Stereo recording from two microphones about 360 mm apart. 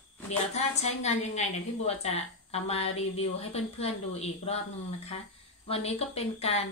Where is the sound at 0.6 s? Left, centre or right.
Centre.